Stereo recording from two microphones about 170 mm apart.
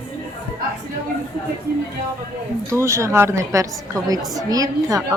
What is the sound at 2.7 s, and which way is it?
A woman's voice, 15° right (ahead or behind).